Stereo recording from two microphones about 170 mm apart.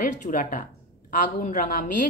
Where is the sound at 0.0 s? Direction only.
50° left (ahead or behind).